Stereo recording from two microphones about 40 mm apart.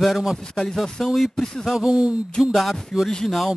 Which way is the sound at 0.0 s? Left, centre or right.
Centre.